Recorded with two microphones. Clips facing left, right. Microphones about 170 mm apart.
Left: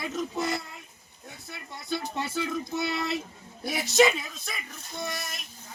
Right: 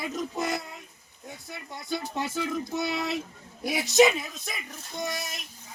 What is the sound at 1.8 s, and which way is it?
Speech, 15° right (ahead or behind).